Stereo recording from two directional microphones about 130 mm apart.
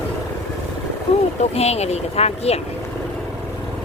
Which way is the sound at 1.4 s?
55° left (ahead or behind).